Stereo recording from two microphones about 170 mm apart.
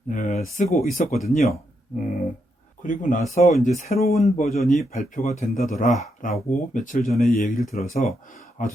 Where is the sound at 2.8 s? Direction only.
50° left (ahead or behind).